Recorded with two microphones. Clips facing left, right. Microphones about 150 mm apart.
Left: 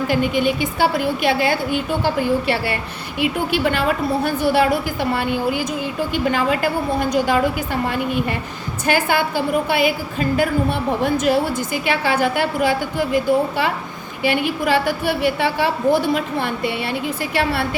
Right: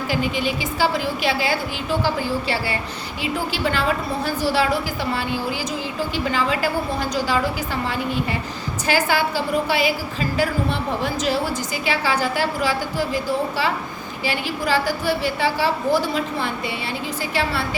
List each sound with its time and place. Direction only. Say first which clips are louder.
0.1 s a woman's voice: left 3 dB; 55° left (ahead or behind)